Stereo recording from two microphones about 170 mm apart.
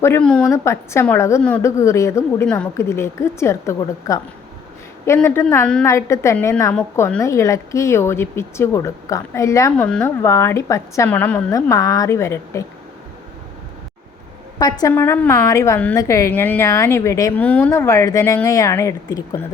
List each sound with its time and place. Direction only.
0.0 s a woman's voice: 10° left (ahead or behind)
0.5 s a woman's voice: 15° left (ahead or behind)
9.7 s a woman's voice: 5° left (ahead or behind)
11.5 s a woman's voice: 20° left (ahead or behind)
14.6 s a woman's voice: 20° left (ahead or behind)